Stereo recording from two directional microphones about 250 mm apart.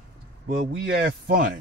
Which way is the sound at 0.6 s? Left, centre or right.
Right.